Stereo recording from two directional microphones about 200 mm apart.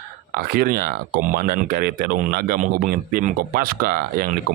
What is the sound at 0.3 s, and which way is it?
Speech, 50° right (ahead or behind).